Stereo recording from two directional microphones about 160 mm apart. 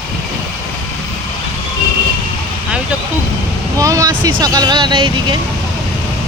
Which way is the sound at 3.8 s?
20° right (ahead or behind).